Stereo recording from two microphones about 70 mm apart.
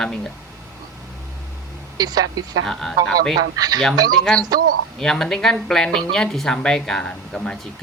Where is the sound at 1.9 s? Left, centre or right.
Right.